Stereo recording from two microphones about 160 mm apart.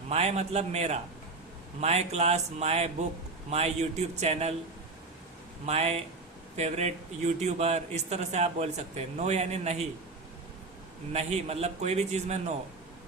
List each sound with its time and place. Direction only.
0.1 s a man's voice: 40° right (ahead or behind)
5.6 s a man's voice: 45° right (ahead or behind)
11.1 s a man's voice: 40° right (ahead or behind)